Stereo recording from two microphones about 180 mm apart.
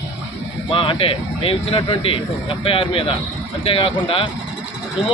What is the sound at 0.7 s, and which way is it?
Speech, 30° left (ahead or behind).